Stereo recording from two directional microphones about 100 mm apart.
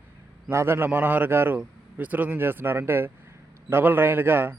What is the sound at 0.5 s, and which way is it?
A man's voice, 25° right (ahead or behind).